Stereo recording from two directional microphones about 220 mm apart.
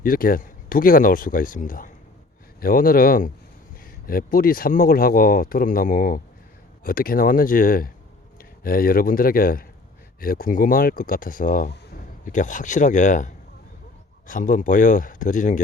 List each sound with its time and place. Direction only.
0.0 s speech: 40° left (ahead or behind)